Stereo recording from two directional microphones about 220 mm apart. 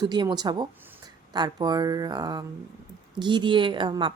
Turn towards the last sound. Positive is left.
turn(degrees=-20)  # may be behind; listen again after turning